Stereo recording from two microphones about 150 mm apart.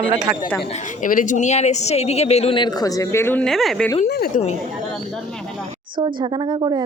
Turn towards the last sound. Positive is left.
turn(degrees=-30)  # may be behind; listen again after turning